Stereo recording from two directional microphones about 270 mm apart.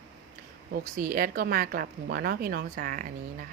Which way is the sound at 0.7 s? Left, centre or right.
Right.